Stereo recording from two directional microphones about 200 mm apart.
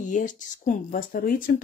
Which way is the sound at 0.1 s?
40° left (ahead or behind).